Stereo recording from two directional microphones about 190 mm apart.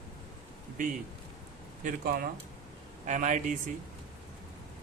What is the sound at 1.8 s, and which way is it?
Speech, 50° right (ahead or behind).